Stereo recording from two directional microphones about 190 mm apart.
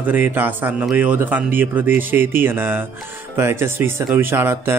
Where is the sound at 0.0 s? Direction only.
10° right (ahead or behind).